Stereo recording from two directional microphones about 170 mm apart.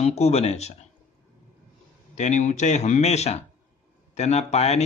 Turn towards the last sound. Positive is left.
turn(degrees=40)  # may be behind; listen again after turning